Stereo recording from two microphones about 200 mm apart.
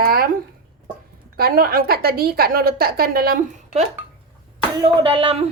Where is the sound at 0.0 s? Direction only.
50° right (ahead or behind).